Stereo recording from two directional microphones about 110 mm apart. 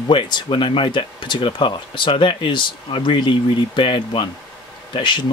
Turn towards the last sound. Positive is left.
turn(degrees=45)  # may be behind; listen again after turning